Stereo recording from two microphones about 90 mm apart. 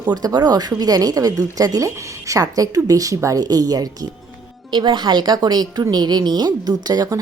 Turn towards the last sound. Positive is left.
turn(degrees=-45)  # may be behind; listen again after turning